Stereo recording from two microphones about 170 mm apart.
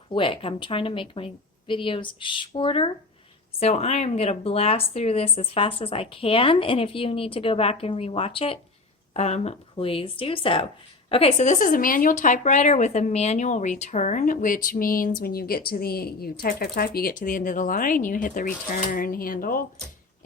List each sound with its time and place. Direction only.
0.1 s speech: 30° left (ahead or behind); by 19.6 s 55° left (ahead or behind)